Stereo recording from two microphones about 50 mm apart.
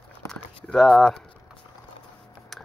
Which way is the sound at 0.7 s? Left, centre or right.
Centre.